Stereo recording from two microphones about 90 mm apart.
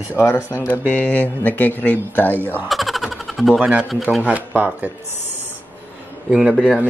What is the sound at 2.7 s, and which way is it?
Vehicle, centre (ahead or behind).